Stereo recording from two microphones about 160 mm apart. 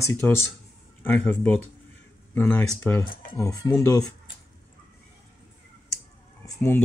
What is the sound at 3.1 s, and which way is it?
Speech, 60° left (ahead or behind).